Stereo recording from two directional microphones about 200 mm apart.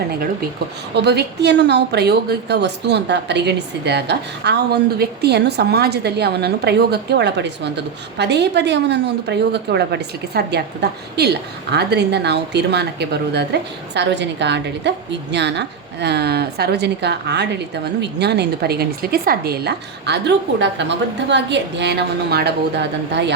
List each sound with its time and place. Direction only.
0.9 s a woman's voice: 55° right (ahead or behind)